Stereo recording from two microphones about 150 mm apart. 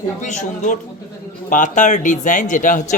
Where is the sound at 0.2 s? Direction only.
55° left (ahead or behind).